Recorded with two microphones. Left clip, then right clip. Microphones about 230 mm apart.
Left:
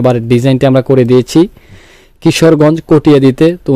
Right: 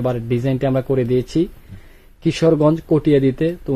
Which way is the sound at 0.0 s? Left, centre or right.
Left.